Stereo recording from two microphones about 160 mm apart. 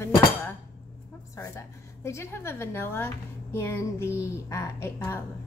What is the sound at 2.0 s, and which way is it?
A woman's voice, 15° left (ahead or behind).